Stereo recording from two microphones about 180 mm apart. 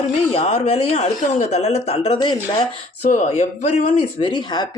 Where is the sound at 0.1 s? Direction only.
35° left (ahead or behind).